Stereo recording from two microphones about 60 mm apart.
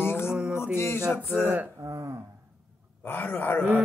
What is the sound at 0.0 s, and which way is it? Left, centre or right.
Music, left.